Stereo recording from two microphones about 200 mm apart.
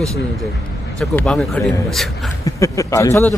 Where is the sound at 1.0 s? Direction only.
5° left (ahead or behind).